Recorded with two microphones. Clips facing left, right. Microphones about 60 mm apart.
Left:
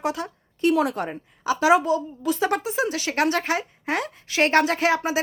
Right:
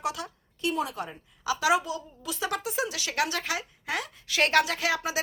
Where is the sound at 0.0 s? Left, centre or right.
Left.